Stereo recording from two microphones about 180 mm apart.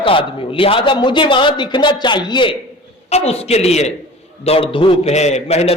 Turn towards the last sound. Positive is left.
turn(degrees=35)  # may be behind; listen again after turning